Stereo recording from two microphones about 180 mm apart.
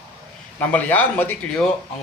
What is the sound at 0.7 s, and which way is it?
Speech, 10° left (ahead or behind).